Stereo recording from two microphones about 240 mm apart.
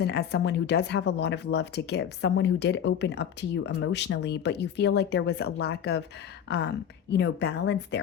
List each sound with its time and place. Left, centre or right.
0.0 s speech: left